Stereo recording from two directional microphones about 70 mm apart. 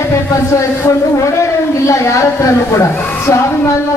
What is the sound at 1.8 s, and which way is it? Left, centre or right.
Speech, left.